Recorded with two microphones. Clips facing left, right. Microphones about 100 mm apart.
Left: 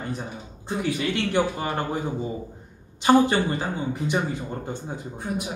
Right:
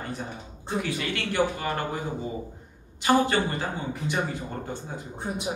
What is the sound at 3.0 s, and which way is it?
Speech, 20° left (ahead or behind).